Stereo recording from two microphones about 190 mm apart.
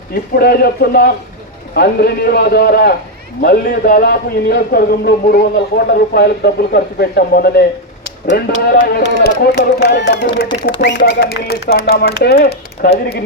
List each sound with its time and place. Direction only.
0.1 s speech: 55° left (ahead or behind)